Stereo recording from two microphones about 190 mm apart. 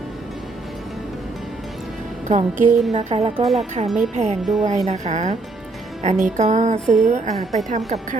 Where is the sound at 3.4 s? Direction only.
Centre (ahead or behind).